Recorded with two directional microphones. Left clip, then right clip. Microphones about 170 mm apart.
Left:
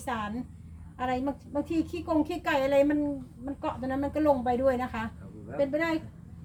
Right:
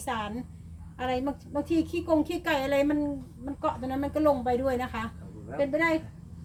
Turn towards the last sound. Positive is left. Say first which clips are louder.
# right 1 dB
turn(degrees=15)  # may be behind; listen again after turning